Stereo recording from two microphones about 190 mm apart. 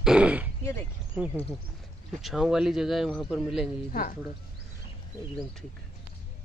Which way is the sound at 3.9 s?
45° left (ahead or behind).